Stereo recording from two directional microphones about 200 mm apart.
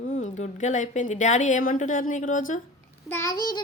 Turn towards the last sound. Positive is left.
turn(degrees=20)  # may be behind; listen again after turning